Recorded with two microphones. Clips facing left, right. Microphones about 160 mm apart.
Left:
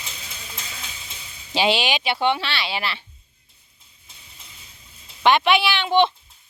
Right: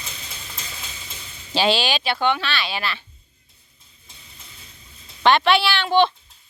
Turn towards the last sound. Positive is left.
turn(degrees=20)  # may be behind; listen again after turning